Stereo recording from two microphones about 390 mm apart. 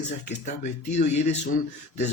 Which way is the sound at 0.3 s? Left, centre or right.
Centre.